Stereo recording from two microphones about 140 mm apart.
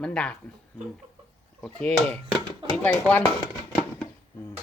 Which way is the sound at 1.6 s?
5° left (ahead or behind).